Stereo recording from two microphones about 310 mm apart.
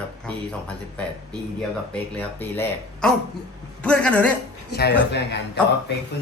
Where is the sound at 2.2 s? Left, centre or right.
Centre.